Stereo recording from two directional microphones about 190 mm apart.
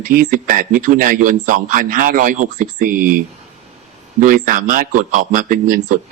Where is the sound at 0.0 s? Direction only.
45° right (ahead or behind).